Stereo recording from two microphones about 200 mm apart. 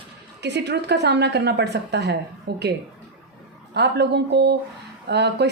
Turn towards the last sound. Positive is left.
turn(degrees=-55)  # may be behind; listen again after turning